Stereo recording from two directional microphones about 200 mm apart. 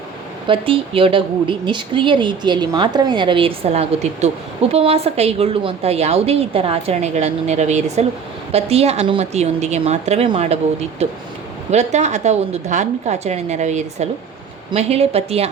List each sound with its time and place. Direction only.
0.4 s a woman's voice: 25° right (ahead or behind)